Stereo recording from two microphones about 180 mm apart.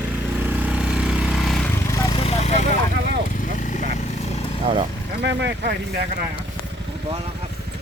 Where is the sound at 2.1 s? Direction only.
35° left (ahead or behind).